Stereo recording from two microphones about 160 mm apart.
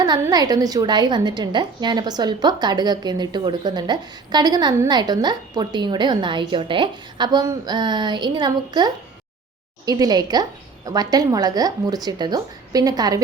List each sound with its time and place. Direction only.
0.0 s a woman's voice: 25° right (ahead or behind)